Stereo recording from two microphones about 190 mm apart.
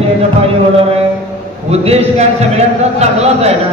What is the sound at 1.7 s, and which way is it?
A man's voice, 35° right (ahead or behind).